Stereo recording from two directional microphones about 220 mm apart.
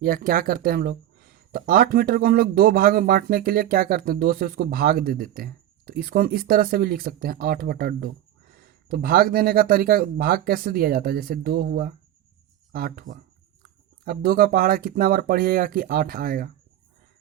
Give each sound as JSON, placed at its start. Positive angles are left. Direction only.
{"t": 0.0, "sound": "speech", "side_deg": -40}